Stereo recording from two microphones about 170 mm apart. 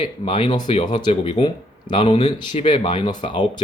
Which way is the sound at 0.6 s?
40° left (ahead or behind).